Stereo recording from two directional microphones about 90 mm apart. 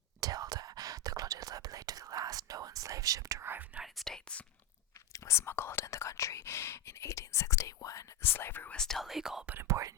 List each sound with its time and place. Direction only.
0.2 s whispering: 45° right (ahead or behind)
3.5 s speech: 20° right (ahead or behind)
3.9 s speech: 5° left (ahead or behind)
5.1 s speech: 30° left (ahead or behind)
8.2 s speech: 25° left (ahead or behind)
8.7 s speech: 5° left (ahead or behind)
9.6 s speech: 35° right (ahead or behind)